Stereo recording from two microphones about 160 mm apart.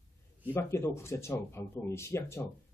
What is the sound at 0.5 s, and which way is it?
Speech, 15° left (ahead or behind).